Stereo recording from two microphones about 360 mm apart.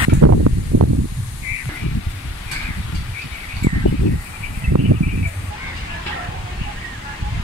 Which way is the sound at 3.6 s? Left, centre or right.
Right.